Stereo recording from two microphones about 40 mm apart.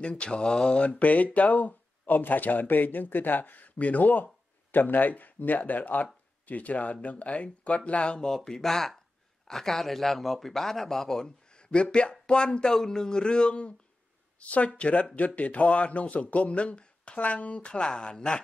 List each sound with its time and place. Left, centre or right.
0.2 s a man's voice: left
8.3 s speech: centre
11.5 s a man's voice: left